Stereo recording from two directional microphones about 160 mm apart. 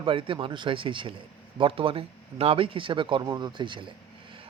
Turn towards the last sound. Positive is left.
turn(degrees=-30)  # may be behind; listen again after turning